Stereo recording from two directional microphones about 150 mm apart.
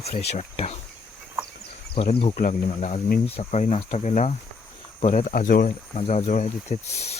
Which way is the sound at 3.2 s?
45° left (ahead or behind).